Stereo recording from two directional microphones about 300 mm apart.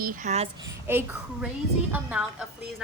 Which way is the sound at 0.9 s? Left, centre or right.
Centre.